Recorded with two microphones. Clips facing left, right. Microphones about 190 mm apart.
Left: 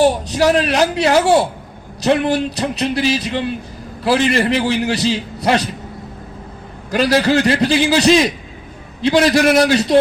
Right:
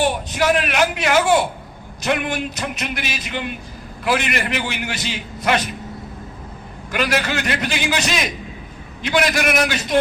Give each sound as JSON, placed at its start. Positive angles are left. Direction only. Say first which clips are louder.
{"t": 0.0, "sound": "a man's voice", "louder": "left 6 dB", "side_deg": 35}
{"t": 6.9, "sound": "a man's voice", "louder": "left 7 dB", "side_deg": 35}